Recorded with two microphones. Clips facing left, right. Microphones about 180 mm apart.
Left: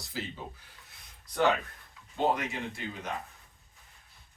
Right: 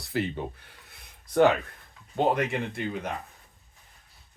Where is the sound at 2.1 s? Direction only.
55° right (ahead or behind).